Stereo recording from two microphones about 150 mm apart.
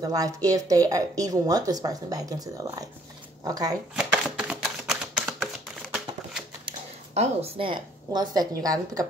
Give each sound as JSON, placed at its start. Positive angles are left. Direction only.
{"t": 0.0, "sound": "speech", "side_deg": -25}
{"t": 3.9, "sound": "typewriter", "side_deg": -5}
{"t": 7.2, "sound": "speech", "side_deg": -40}